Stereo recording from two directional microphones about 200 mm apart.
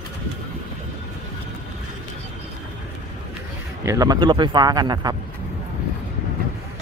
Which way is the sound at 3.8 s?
20° right (ahead or behind).